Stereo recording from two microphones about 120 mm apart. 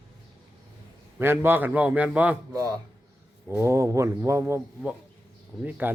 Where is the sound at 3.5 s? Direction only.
20° right (ahead or behind).